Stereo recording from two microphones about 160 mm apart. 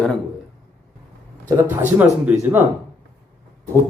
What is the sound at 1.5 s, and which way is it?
Speech, 20° right (ahead or behind).